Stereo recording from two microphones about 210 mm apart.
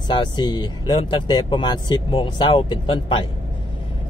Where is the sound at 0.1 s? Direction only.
20° left (ahead or behind).